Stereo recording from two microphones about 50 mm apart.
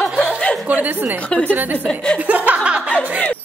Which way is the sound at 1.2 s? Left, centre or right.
Left.